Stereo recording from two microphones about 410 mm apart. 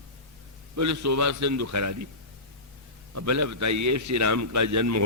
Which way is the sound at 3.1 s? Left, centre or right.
Right.